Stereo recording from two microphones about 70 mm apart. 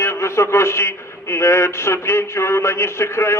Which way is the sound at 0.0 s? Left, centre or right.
Left.